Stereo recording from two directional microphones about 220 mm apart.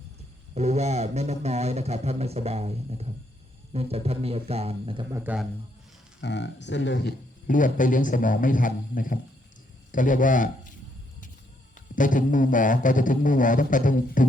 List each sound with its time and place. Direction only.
0.5 s speech: 30° right (ahead or behind)
5.2 s a man's voice: 5° right (ahead or behind)
6.2 s speech: 50° left (ahead or behind)
7.4 s a man's voice: 35° left (ahead or behind)
11.9 s a man's voice: 35° left (ahead or behind)